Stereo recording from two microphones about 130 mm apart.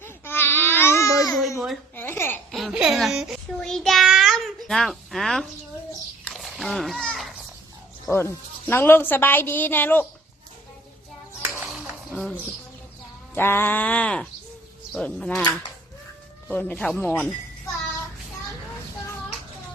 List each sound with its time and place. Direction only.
0.0 s babbling: 15° left (ahead or behind)
1.5 s a sound: 5° right (ahead or behind)
2.0 s babbling: 15° left (ahead or behind)
2.5 s a sound: centre (ahead or behind)
8.1 s a woman's voice: 20° left (ahead or behind)
11.6 s dishes: 5° right (ahead or behind)
12.1 s speech: 5° left (ahead or behind)
13.3 s a woman's voice: 15° left (ahead or behind)
16.5 s a woman's voice: 10° left (ahead or behind)